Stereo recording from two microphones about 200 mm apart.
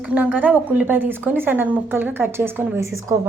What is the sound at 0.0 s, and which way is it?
A woman's voice, 5° right (ahead or behind).